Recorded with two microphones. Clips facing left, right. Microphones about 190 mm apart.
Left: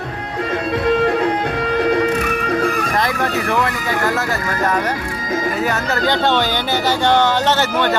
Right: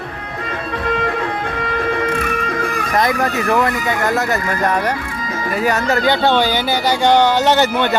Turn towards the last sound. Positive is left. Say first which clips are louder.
# right 2 dB
turn(degrees=-15)  # may be behind; listen again after turning